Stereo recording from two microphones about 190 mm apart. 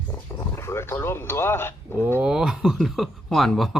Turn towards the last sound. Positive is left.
turn(degrees=0)  # may be behind; listen again after turning